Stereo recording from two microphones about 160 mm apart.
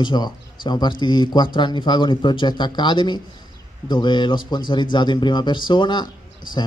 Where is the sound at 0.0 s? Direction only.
30° left (ahead or behind).